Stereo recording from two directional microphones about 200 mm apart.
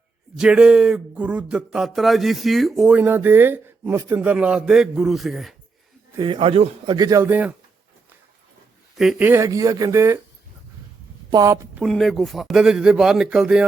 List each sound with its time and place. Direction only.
0.3 s speech: 5° right (ahead or behind)
6.1 s a man's voice: 25° right (ahead or behind)
9.0 s speech: 5° right (ahead or behind)
11.3 s speech: 15° right (ahead or behind)
11.8 s speech: centre (ahead or behind)